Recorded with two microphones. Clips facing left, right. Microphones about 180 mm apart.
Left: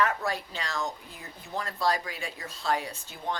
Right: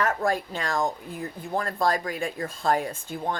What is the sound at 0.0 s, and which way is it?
Speech, 45° right (ahead or behind).